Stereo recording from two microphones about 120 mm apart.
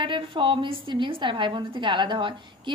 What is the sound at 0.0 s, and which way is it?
A woman's voice, 45° right (ahead or behind).